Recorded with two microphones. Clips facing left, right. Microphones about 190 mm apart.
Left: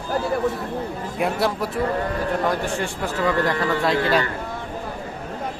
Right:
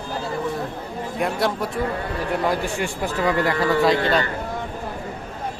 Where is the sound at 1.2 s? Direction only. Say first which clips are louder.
Left 1 dB; centre (ahead or behind).